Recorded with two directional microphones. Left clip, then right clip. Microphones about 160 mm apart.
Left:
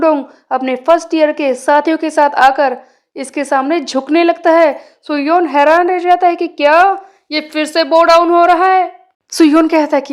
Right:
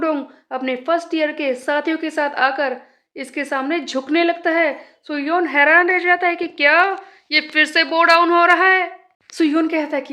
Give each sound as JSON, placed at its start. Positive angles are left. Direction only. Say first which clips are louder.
{"t": 0.0, "sound": "a woman's voice", "louder": "left 9 dB", "side_deg": 25}
{"t": 8.1, "sound": "speech", "louder": "left 3 dB", "side_deg": 15}
{"t": 8.4, "sound": "a woman's voice", "louder": "left 4 dB", "side_deg": 35}